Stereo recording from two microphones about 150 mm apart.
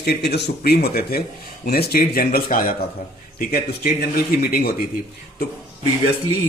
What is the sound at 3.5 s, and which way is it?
Speech, 90° left.